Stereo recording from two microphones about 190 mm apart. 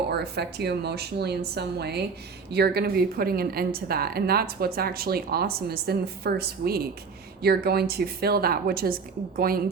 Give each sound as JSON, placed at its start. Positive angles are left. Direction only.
{"t": 0.1, "sound": "a woman's voice", "side_deg": -60}